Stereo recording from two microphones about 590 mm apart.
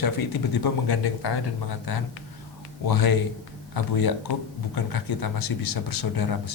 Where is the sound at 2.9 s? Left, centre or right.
Left.